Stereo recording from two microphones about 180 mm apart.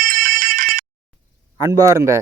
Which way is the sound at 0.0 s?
55° right (ahead or behind).